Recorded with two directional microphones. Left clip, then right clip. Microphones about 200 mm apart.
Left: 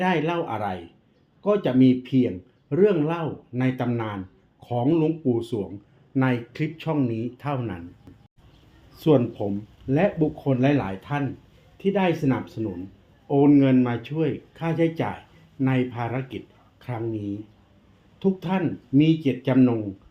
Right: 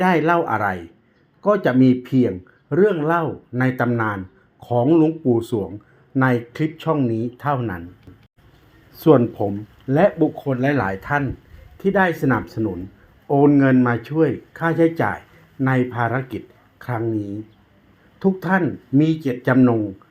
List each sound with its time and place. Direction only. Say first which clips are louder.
0.0 s speech: right 7 dB; 25° right (ahead or behind)
9.0 s speech: right 6 dB; 25° right (ahead or behind)
16.7 s a sound: right 8 dB; 25° right (ahead or behind)
18.2 s speech: right 6 dB; 30° right (ahead or behind)